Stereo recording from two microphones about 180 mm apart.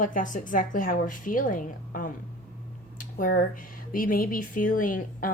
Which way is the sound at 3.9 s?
50° left (ahead or behind).